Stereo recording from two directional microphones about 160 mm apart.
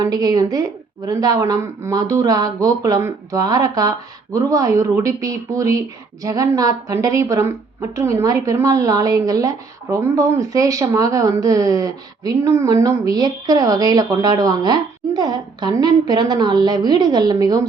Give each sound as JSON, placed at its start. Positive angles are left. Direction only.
{"t": 0.0, "sound": "a woman's voice", "side_deg": -25}